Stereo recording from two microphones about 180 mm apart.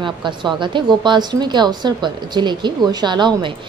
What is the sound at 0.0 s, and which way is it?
Speech, 25° right (ahead or behind).